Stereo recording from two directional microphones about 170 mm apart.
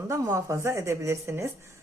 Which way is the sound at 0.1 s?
20° right (ahead or behind).